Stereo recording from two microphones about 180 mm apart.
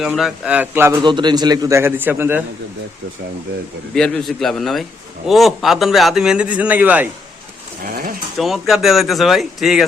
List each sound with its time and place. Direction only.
0.0 s a man's voice: centre (ahead or behind)
1.0 s a man's voice: 25° right (ahead or behind)
3.9 s a man's voice: 5° left (ahead or behind)
7.9 s a sound: 55° right (ahead or behind)
8.4 s speech: centre (ahead or behind)